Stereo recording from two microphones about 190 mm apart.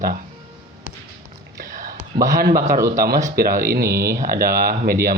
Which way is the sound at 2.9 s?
50° right (ahead or behind).